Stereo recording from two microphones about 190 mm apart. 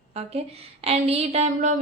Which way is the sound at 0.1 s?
35° right (ahead or behind).